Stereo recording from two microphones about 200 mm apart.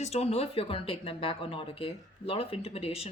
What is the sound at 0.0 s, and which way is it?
Speech, 30° left (ahead or behind).